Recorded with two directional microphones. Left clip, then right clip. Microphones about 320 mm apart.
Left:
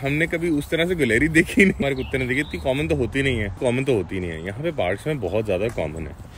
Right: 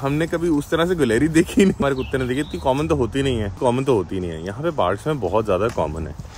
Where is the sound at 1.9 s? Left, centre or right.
Right.